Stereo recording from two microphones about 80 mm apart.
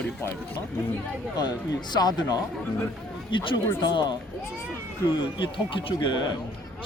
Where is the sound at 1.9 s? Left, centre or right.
Left.